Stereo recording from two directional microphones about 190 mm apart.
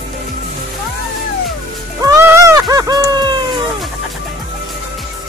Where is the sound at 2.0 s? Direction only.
15° right (ahead or behind).